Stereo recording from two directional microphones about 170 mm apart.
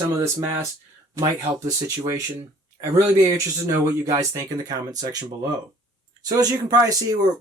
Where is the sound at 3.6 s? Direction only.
20° right (ahead or behind).